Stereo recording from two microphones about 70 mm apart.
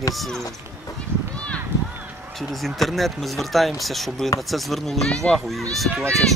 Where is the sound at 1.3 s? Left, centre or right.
Centre.